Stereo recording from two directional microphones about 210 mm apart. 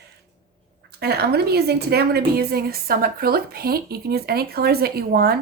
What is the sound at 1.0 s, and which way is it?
A woman's voice, 50° right (ahead or behind).